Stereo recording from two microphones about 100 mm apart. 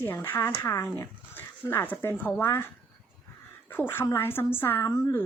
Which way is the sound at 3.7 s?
20° left (ahead or behind).